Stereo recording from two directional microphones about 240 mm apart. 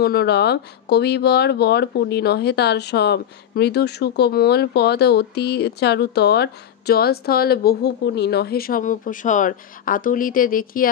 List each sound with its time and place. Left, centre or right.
0.0 s speech: left